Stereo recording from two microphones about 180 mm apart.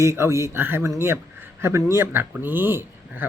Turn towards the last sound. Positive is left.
turn(degrees=-10)  # may be behind; listen again after turning